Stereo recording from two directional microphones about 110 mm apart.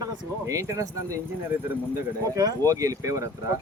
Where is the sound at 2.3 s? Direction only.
30° right (ahead or behind).